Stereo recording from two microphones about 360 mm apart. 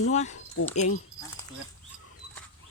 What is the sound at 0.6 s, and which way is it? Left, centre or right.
Speech, left.